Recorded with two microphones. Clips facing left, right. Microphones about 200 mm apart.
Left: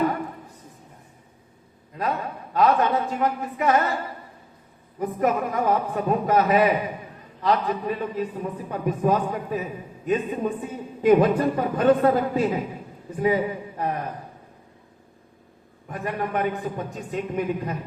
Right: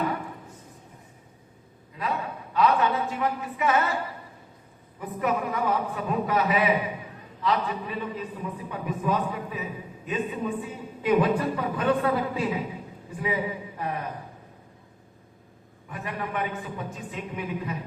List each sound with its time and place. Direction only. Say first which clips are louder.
2.0 s a woman's voice: left 3 dB; 40° left (ahead or behind)
4.9 s a woman's voice: left 4 dB; 45° left (ahead or behind)
15.9 s a woman's voice: left 5 dB; 45° left (ahead or behind)